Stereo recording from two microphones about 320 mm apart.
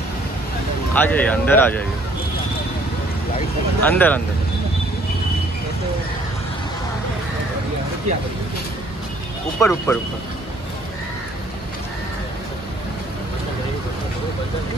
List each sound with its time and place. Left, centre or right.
0.9 s speech: centre
3.8 s speech: centre
9.6 s speech: centre